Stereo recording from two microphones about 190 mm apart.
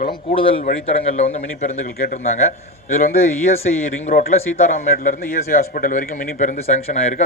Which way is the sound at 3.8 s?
45° left (ahead or behind).